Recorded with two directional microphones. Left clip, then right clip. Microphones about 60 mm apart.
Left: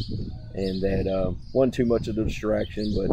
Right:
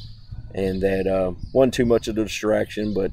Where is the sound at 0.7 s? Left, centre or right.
Right.